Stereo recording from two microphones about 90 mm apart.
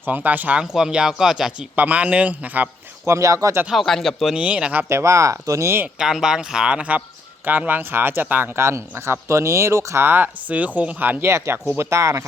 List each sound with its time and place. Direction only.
0.0 s speech: 20° right (ahead or behind)
1.7 s speech: 20° right (ahead or behind)
3.1 s speech: 35° right (ahead or behind)
3.7 s speech: 5° left (ahead or behind)
4.4 s speech: 10° right (ahead or behind); by 5.8 s 30° right (ahead or behind)
6.0 s speech: 5° right (ahead or behind)
8.5 s speech: 30° right (ahead or behind)